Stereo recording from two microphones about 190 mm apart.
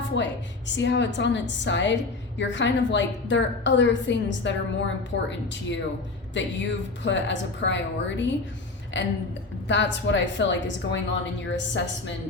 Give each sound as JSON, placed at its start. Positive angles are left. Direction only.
{"t": 0.2, "sound": "a woman's voice", "side_deg": 70}
{"t": 6.3, "sound": "a woman's voice", "side_deg": 70}